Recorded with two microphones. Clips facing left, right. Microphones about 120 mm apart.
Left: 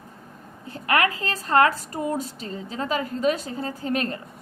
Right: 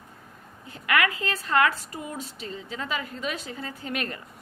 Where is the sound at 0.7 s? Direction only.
35° left (ahead or behind).